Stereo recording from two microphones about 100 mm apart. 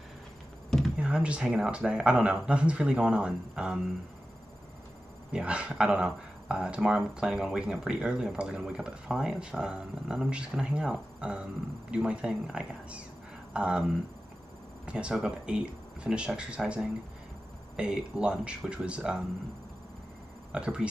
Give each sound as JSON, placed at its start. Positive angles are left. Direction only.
{"t": 0.9, "sound": "speech", "side_deg": -10}
{"t": 5.3, "sound": "speech", "side_deg": -10}
{"t": 20.5, "sound": "speech", "side_deg": -10}